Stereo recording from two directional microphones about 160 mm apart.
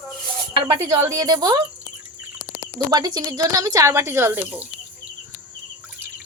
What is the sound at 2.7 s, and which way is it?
Speech, 25° right (ahead or behind).